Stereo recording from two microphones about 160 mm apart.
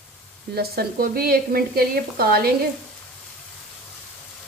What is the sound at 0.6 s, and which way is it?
Speech, 70° right (ahead or behind).